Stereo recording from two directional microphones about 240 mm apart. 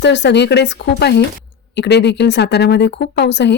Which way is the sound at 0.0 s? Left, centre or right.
Left.